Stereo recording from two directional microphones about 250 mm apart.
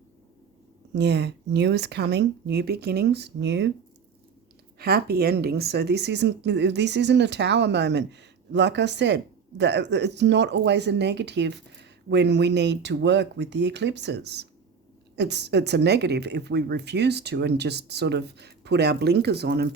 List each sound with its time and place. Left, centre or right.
0.9 s speech: right
4.8 s speech: right